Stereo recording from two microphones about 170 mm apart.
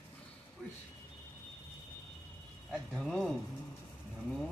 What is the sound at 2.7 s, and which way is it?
Speech, centre (ahead or behind).